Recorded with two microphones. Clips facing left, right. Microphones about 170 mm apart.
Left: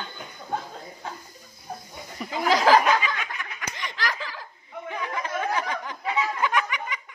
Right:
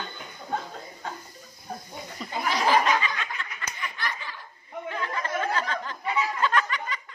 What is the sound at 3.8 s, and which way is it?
Snicker, 85° left.